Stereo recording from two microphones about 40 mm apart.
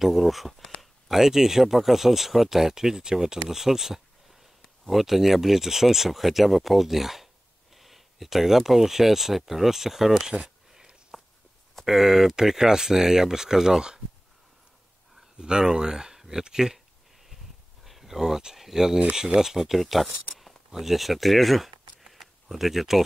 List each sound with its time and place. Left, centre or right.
0.0 s speech: centre
11.1 s walk: centre
11.8 s speech: centre
15.3 s speech: centre
17.8 s speech: centre
19.8 s speech: centre
20.3 s a sound: centre